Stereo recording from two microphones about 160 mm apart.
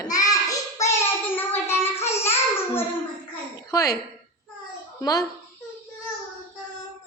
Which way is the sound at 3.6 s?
20° left (ahead or behind).